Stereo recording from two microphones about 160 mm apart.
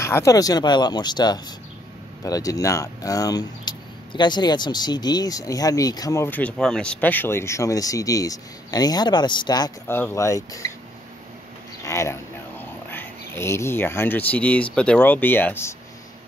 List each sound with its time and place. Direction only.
0.0 s speech: 20° left (ahead or behind)
11.8 s speech: 20° left (ahead or behind)